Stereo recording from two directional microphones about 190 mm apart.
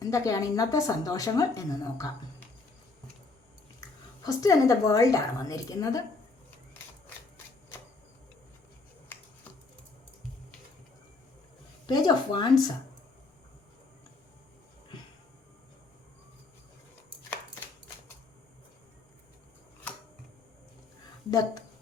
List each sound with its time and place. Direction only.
0.0 s speech: 15° left (ahead or behind)
3.8 s speech: 20° left (ahead or behind)
11.9 s speech: 20° left (ahead or behind)
21.2 s a woman's voice: 20° left (ahead or behind)